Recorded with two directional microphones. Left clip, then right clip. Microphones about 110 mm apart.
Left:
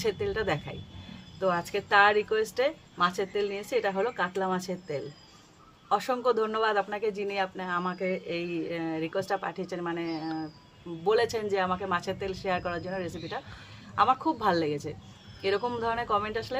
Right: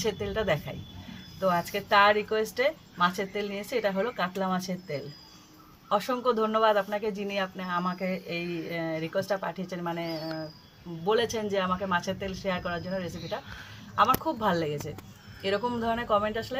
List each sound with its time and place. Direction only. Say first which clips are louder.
0.0 s speech: even; 35° left (ahead or behind)